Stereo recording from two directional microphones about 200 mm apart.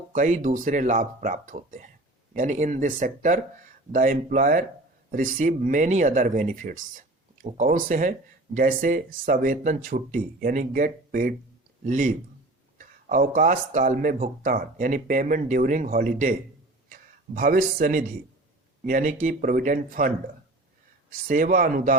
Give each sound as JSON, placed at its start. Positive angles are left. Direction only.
{"t": 0.1, "sound": "speech", "side_deg": -40}
{"t": 21.2, "sound": "speech", "side_deg": -45}